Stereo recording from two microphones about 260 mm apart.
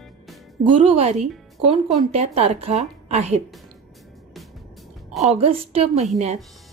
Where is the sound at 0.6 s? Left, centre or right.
Right.